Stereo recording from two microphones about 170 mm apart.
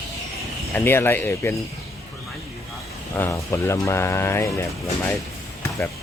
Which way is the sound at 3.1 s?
15° left (ahead or behind).